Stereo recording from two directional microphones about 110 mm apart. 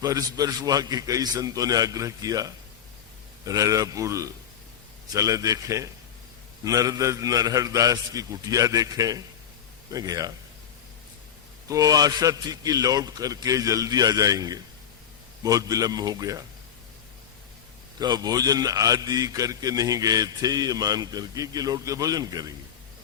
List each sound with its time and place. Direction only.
0.0 s a man's voice: 35° right (ahead or behind)
11.7 s a man's voice: 35° right (ahead or behind)
18.0 s a man's voice: 40° right (ahead or behind)